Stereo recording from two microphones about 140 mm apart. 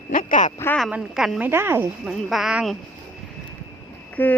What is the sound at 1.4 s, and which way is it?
Speech, 15° right (ahead or behind).